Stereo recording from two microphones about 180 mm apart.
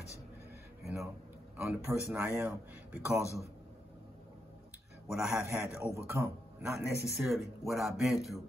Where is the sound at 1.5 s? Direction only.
10° right (ahead or behind).